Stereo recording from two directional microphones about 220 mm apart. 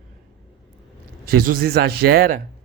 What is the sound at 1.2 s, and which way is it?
Speech, 40° right (ahead or behind).